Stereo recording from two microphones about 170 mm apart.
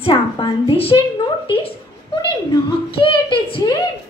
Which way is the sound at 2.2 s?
30° left (ahead or behind).